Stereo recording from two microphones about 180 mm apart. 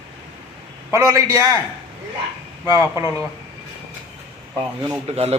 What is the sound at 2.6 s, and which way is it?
Speech, 15° right (ahead or behind).